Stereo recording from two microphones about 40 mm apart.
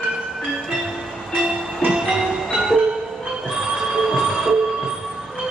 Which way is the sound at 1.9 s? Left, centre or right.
Centre.